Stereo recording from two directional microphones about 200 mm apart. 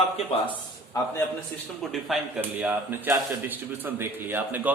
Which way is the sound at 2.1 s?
5° right (ahead or behind).